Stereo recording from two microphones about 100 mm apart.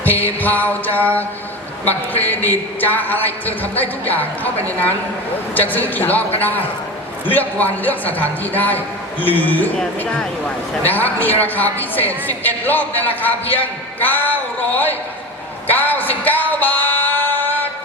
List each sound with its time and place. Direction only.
0.3 s a woman's voice: 15° left (ahead or behind)
5.5 s a woman's voice: 20° left (ahead or behind)
15.6 s music: 20° left (ahead or behind)